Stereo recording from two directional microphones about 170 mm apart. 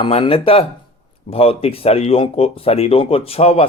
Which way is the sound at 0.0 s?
35° left (ahead or behind).